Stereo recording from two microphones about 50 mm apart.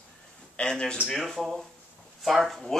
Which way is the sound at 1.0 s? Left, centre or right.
Centre.